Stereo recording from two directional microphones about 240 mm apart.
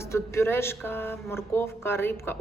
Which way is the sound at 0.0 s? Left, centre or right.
Centre.